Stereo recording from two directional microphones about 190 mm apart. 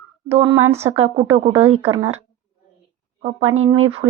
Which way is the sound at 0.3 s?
30° right (ahead or behind).